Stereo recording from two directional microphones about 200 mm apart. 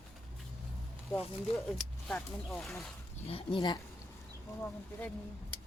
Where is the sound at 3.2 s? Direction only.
25° left (ahead or behind).